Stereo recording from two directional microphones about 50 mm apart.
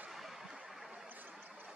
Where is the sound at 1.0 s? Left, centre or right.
Right.